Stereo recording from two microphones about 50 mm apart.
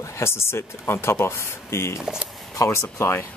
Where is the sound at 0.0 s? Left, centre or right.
Left.